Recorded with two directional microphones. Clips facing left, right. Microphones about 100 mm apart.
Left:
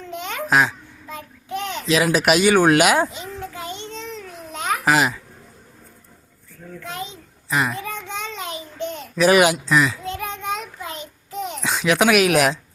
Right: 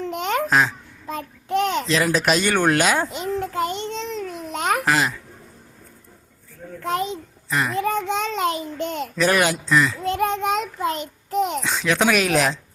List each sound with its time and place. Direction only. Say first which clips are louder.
0.1 s babbling: right 4 dB; 55° right (ahead or behind)
1.5 s a sound: right 7 dB; 65° right (ahead or behind)
1.9 s speech: left 7 dB; 5° left (ahead or behind)
3.3 s child singing: right 8 dB; 60° right (ahead or behind)
4.2 s babbling: right 5 dB; 55° right (ahead or behind)
4.9 s speech: left 2 dB; 15° left (ahead or behind)
6.8 s a sound: right 9 dB; 55° right (ahead or behind)
7.5 s speech: left 1 dB; 10° left (ahead or behind)
7.8 s a sound: right 8 dB; 55° right (ahead or behind)
9.1 s speech: left 5 dB; 10° left (ahead or behind)
10.0 s child singing: right 7 dB; 55° right (ahead or behind)
11.6 s speech: left 2 dB; 10° left (ahead or behind)